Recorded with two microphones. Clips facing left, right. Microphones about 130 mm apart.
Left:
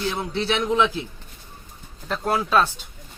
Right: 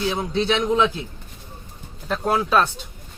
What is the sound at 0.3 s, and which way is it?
Speech, 20° right (ahead or behind).